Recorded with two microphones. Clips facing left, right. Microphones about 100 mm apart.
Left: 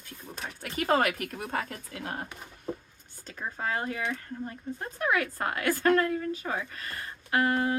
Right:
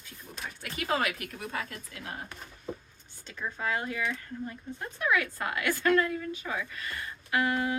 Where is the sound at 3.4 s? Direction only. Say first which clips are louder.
Left 1 dB; 40° left (ahead or behind).